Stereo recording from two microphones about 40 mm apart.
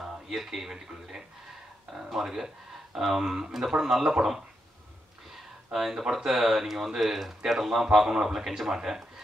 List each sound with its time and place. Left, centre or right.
0.0 s speech: centre
5.7 s speech: centre